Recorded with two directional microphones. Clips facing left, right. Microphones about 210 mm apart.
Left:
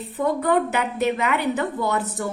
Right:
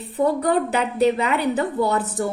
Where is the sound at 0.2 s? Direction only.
35° right (ahead or behind).